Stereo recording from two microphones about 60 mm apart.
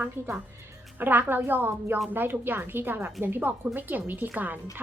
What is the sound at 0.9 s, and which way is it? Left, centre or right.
Speech, right.